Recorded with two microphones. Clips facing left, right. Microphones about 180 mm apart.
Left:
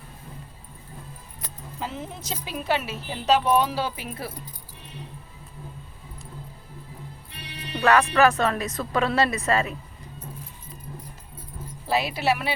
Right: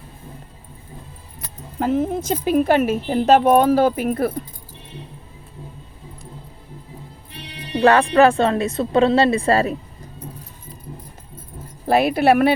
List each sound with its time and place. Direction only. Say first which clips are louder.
1.8 s speech: right 14 dB; 55° right (ahead or behind)
7.7 s speech: right 6 dB; 30° right (ahead or behind)
11.9 s speech: right 9 dB; 55° right (ahead or behind)